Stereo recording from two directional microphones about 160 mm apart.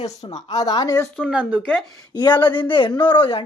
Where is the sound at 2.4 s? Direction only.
30° left (ahead or behind).